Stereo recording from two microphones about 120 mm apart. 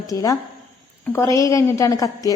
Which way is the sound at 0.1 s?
30° left (ahead or behind).